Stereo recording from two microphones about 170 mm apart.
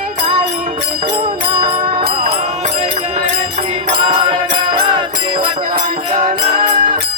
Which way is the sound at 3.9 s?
30° right (ahead or behind).